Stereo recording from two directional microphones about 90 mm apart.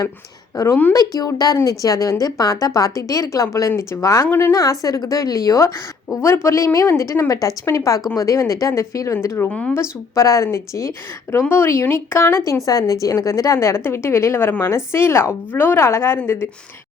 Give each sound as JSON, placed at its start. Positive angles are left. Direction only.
{"t": 0.5, "sound": "a woman's voice", "side_deg": 35}
{"t": 4.5, "sound": "a woman's voice", "side_deg": 40}
{"t": 9.5, "sound": "speech", "side_deg": 15}
{"t": 10.2, "sound": "speech", "side_deg": 35}
{"t": 12.6, "sound": "a woman's voice", "side_deg": 40}